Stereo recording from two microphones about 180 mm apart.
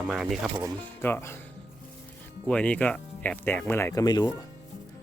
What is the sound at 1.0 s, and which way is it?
Speech, 10° left (ahead or behind).